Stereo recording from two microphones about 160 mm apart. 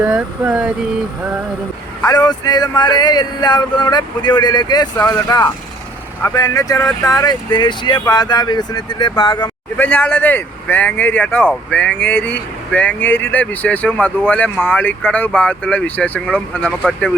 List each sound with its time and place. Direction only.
0.0 s speech: 10° right (ahead or behind)
2.0 s speech: 20° left (ahead or behind)
9.7 s speech: 10° left (ahead or behind)